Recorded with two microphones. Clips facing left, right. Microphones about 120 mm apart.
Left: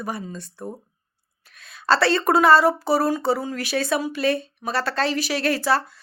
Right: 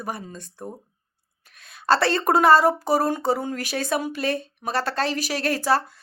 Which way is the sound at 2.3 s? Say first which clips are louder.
Even; 45° right (ahead or behind).